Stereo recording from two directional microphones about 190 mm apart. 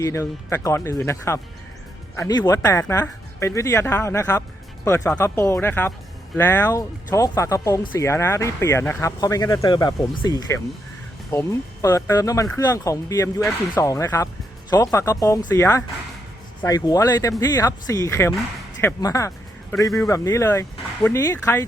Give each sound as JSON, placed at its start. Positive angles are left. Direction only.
{"t": 0.0, "sound": "speech", "side_deg": 15}